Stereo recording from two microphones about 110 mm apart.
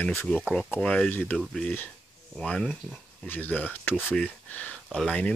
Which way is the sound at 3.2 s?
15° left (ahead or behind).